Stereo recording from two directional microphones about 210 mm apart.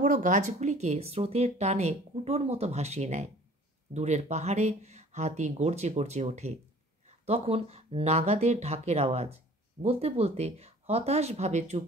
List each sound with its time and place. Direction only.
0.0 s speech: 35° right (ahead or behind)